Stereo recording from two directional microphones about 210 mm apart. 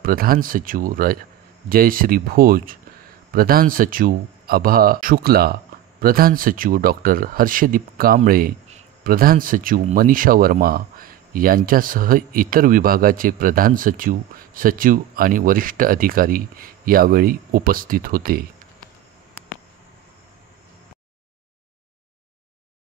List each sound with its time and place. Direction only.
0.0 s speech: 45° right (ahead or behind)